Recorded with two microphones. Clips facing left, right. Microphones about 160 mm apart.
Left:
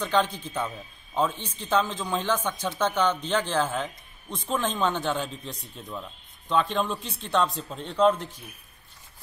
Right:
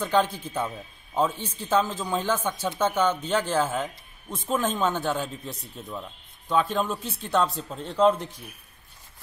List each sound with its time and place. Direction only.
0.0 s a man's voice: 10° right (ahead or behind)